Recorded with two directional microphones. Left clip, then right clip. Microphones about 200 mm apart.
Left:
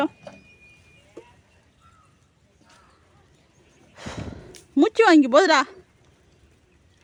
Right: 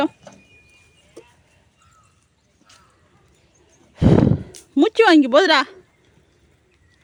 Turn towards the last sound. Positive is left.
turn(degrees=-5)  # may be behind; listen again after turning